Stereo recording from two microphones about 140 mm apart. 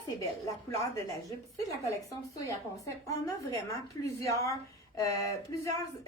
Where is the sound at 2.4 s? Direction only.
25° left (ahead or behind).